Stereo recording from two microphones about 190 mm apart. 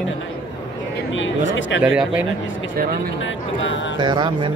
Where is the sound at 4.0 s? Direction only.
25° right (ahead or behind).